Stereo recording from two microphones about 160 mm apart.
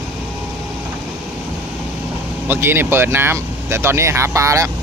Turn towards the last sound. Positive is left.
turn(degrees=-20)  # may be behind; listen again after turning